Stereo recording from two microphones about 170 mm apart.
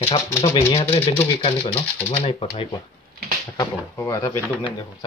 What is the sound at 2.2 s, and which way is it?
Speech, 35° left (ahead or behind).